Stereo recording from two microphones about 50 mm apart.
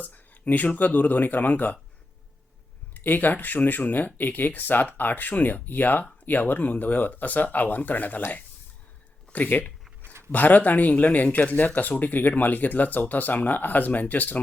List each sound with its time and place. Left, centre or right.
0.0 s speech: left
2.9 s speech: left
9.3 s speech: left
10.0 s a sound: right
10.3 s speech: left